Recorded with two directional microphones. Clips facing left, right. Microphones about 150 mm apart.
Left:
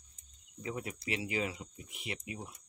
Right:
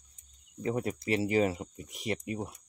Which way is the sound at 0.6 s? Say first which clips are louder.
Right 8 dB; 45° right (ahead or behind).